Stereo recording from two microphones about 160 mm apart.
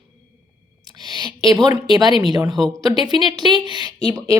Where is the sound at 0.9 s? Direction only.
25° right (ahead or behind).